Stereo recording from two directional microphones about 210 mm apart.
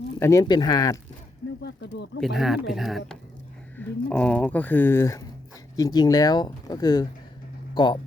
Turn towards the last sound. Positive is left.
turn(degrees=20)  # may be behind; listen again after turning